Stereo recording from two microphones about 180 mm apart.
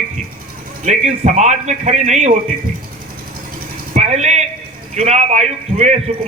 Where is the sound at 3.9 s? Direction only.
40° right (ahead or behind).